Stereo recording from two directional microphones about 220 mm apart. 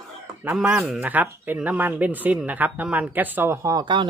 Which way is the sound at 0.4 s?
5° right (ahead or behind).